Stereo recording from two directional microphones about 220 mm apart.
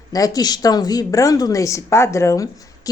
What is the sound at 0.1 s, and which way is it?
Speech, 15° left (ahead or behind).